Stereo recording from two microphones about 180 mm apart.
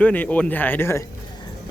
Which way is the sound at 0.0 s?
10° left (ahead or behind).